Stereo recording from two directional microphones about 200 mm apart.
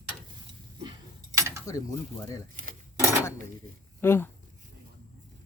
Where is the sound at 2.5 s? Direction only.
45° right (ahead or behind).